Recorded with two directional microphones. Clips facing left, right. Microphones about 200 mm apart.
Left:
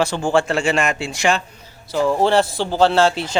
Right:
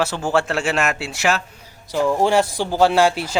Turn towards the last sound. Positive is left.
turn(degrees=-10)  # may be behind; listen again after turning